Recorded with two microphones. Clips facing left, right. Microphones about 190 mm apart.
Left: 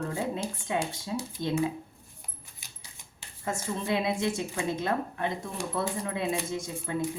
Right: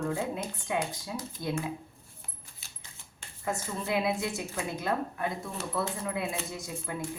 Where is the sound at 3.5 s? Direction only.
25° left (ahead or behind).